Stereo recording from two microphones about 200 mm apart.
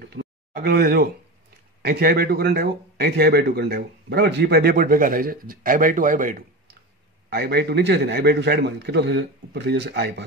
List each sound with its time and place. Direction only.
0.0 s a sound: 55° right (ahead or behind)
1.8 s speech: 50° right (ahead or behind)
7.2 s a man's voice: 55° right (ahead or behind)